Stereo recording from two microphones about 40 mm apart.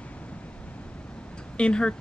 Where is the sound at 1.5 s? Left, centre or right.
Left.